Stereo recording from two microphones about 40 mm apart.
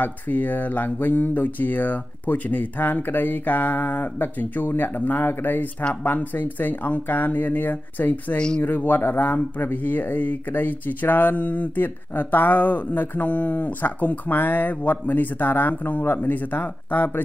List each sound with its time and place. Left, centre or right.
0.0 s speech: left
8.4 s speech: left
8.6 s speech: left
9.6 s speech: left